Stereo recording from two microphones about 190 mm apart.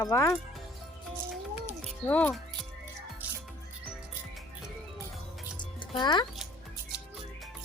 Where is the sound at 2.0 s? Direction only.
10° left (ahead or behind).